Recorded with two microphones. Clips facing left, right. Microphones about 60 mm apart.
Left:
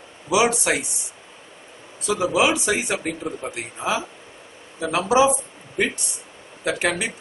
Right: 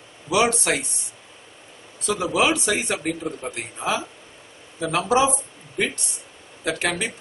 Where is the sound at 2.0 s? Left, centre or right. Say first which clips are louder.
Left 1 dB; centre.